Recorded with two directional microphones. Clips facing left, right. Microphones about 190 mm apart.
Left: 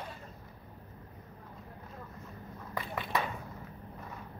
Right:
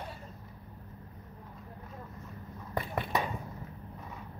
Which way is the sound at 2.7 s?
50° right (ahead or behind).